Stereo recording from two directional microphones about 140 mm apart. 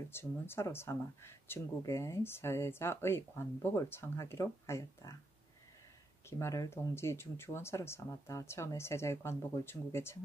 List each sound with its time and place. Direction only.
0.1 s speech: 15° left (ahead or behind)
6.2 s speech: 20° left (ahead or behind)